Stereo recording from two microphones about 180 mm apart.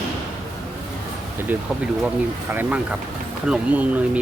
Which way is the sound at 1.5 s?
10° right (ahead or behind).